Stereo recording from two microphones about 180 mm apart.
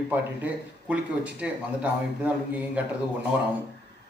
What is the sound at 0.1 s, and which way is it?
Speech, 10° right (ahead or behind).